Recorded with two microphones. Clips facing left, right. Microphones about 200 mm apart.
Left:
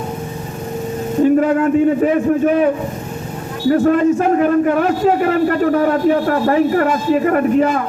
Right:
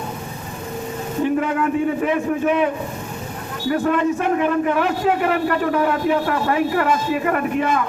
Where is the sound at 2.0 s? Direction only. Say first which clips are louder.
Left 6 dB; 40° left (ahead or behind).